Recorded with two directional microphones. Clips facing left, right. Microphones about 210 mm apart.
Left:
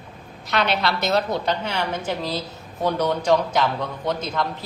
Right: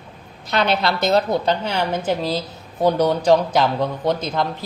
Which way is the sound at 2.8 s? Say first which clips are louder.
Right 5 dB; 35° right (ahead or behind).